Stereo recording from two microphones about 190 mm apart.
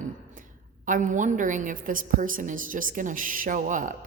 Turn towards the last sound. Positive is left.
turn(degrees=-45)  # may be behind; listen again after turning